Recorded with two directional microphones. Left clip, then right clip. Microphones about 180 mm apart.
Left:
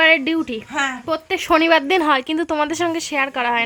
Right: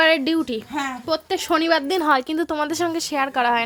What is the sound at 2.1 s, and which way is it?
A woman's voice, 5° right (ahead or behind).